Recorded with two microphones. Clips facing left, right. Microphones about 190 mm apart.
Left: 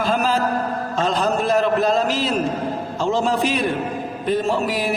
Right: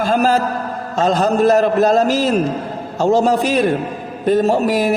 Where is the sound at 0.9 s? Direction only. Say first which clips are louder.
Right 6 dB; 40° right (ahead or behind).